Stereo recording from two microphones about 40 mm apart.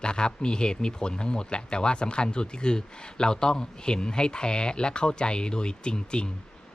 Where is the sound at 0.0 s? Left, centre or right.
Left.